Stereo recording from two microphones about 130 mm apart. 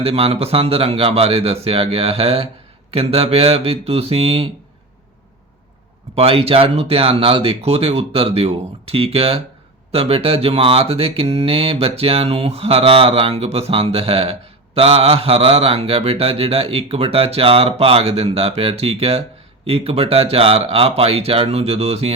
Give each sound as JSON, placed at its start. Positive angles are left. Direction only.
{"t": 0.0, "sound": "speech", "side_deg": -50}
{"t": 6.1, "sound": "speech", "side_deg": -50}